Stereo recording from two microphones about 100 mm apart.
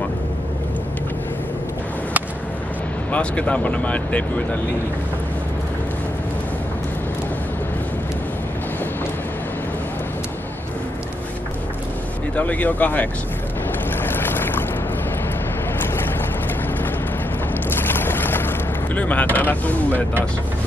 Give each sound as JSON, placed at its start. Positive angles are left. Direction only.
{"t": 3.1, "sound": "speech", "side_deg": 15}
{"t": 12.4, "sound": "speech", "side_deg": 15}
{"t": 14.0, "sound": "boat", "side_deg": 20}
{"t": 17.6, "sound": "boat", "side_deg": 20}
{"t": 18.9, "sound": "speech", "side_deg": 15}